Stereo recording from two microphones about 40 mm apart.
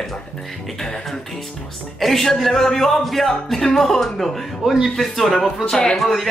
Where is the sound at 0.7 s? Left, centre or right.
Centre.